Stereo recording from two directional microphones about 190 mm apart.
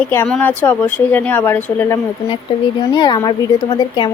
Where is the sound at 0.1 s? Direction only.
10° left (ahead or behind).